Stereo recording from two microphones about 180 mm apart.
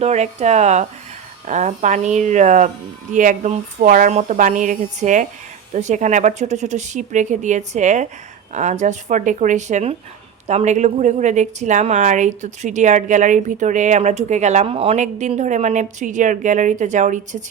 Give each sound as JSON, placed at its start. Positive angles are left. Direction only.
{"t": 0.0, "sound": "a woman's voice", "side_deg": -40}